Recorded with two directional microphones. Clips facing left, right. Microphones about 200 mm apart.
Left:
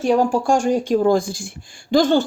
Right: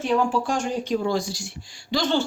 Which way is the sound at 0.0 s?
40° left (ahead or behind).